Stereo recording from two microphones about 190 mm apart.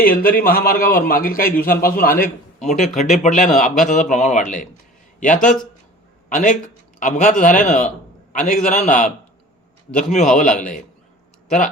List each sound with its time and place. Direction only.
0.0 s a man's voice: 50° left (ahead or behind)